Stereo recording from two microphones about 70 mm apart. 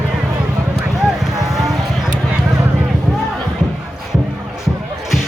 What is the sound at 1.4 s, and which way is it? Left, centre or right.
Vehicle, centre.